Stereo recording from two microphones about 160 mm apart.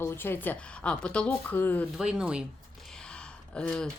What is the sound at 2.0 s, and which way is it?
Speech, 5° right (ahead or behind).